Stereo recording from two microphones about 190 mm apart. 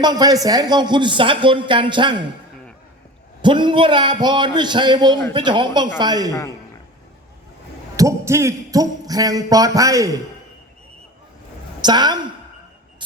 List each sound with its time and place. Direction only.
0.0 s speech: 20° right (ahead or behind)
3.4 s speech: 25° right (ahead or behind)
7.9 s speech: 15° right (ahead or behind)
11.8 s speech: 20° right (ahead or behind)